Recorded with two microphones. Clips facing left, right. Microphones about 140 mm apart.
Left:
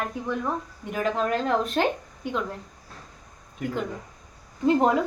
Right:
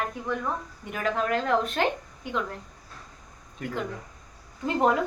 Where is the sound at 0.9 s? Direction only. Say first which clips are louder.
Left 2 dB; 30° left (ahead or behind).